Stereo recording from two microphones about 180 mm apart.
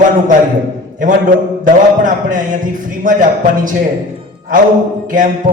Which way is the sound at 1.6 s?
45° right (ahead or behind).